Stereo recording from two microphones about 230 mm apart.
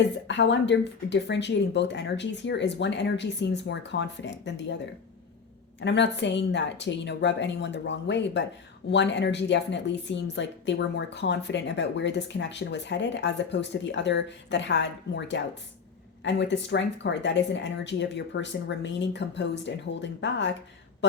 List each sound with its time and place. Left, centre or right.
0.3 s a woman's voice: left
5.8 s a woman's voice: left